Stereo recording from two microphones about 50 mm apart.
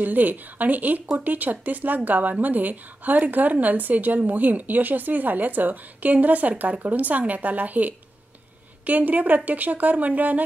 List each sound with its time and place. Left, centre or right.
0.0 s a woman's voice: right